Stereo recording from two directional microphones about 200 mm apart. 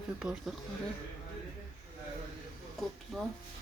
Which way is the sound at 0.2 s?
5° right (ahead or behind).